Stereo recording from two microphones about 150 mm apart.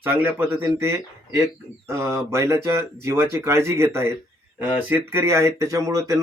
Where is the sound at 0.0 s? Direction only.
15° right (ahead or behind).